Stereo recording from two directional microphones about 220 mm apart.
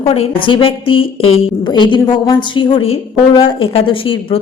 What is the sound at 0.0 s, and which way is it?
A woman's voice, 25° left (ahead or behind).